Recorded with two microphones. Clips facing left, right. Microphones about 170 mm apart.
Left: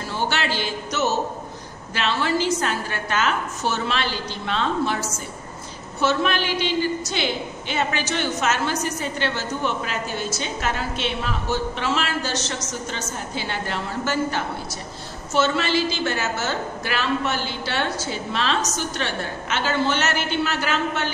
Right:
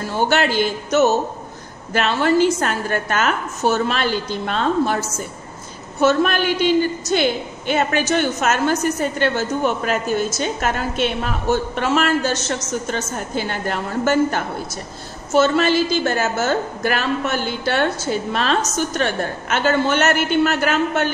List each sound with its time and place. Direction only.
0.3 s a woman's voice: 50° right (ahead or behind)